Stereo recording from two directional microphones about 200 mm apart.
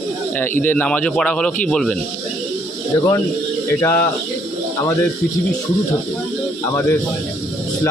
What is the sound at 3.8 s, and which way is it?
Speech, 10° left (ahead or behind).